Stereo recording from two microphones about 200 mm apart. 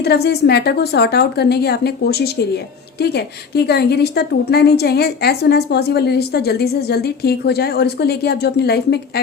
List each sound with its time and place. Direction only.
0.0 s a woman's voice: 55° left (ahead or behind)